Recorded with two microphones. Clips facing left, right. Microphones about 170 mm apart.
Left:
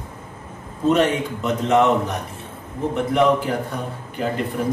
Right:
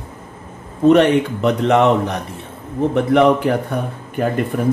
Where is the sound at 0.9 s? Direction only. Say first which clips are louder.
Right 6 dB; 65° right (ahead or behind).